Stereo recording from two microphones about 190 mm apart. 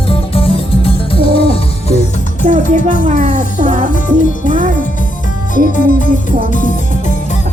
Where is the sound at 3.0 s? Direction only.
40° right (ahead or behind).